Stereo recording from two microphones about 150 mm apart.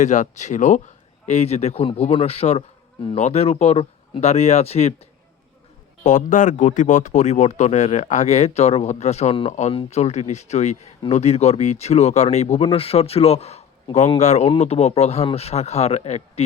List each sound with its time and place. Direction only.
0.0 s speech: 55° left (ahead or behind)